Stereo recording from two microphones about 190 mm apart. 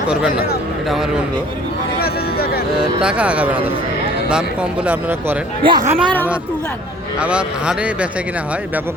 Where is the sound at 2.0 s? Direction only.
55° left (ahead or behind).